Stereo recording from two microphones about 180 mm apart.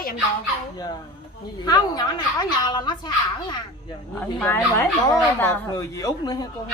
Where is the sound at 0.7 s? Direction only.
20° left (ahead or behind).